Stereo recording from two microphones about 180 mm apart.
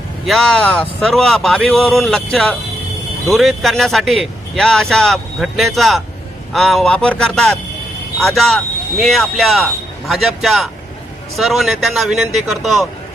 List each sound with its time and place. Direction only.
0.3 s a man's voice: 5° left (ahead or behind)